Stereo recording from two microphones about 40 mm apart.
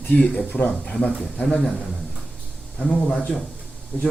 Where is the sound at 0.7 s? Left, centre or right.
Centre.